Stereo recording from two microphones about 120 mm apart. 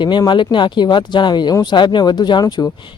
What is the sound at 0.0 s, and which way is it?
Speech, 40° left (ahead or behind).